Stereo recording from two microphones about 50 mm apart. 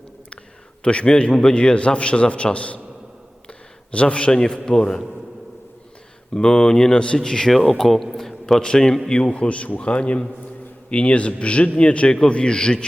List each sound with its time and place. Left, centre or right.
0.9 s a man's voice: centre
3.9 s speech: left
6.3 s speech: centre
7.6 s a man's voice: centre